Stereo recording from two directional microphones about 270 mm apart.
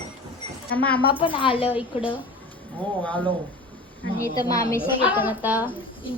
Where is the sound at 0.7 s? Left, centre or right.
Centre.